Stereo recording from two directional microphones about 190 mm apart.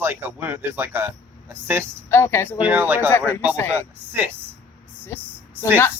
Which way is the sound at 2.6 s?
10° right (ahead or behind).